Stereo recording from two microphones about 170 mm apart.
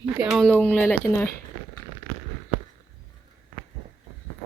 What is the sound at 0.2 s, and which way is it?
Speech, centre (ahead or behind).